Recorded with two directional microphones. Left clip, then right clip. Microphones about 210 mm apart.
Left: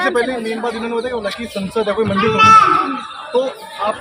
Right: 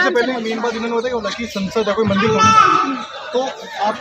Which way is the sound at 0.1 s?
5° left (ahead or behind).